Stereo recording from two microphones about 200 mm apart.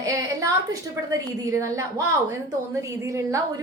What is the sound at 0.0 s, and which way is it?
A woman's voice, 15° right (ahead or behind).